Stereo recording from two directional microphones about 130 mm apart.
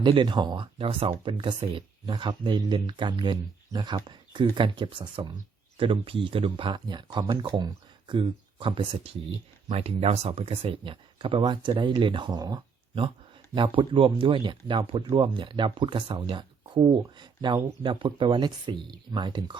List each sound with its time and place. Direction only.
0.0 s speech: 35° right (ahead or behind)
9.6 s speech: 55° right (ahead or behind); by 19.5 s 35° right (ahead or behind)